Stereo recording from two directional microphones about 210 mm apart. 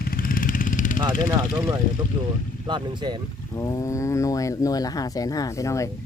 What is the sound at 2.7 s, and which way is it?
Speech, 20° right (ahead or behind).